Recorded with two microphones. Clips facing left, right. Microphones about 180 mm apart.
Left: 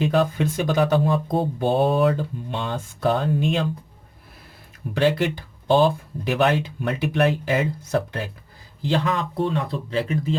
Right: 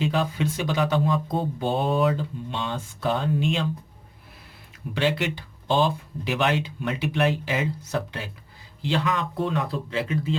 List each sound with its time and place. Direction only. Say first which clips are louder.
0.0 s speech: left 4 dB; 50° left (ahead or behind)
4.9 s speech: left 4 dB; 45° left (ahead or behind)